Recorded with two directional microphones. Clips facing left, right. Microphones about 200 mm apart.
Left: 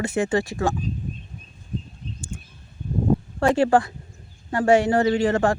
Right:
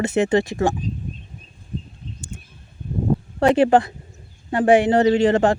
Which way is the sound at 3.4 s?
20° right (ahead or behind).